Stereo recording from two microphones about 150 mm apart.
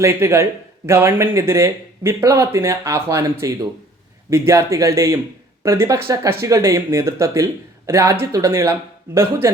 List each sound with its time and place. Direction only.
0.0 s speech: 20° right (ahead or behind)